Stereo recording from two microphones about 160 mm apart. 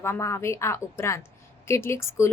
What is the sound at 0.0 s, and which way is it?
Speech, 15° left (ahead or behind).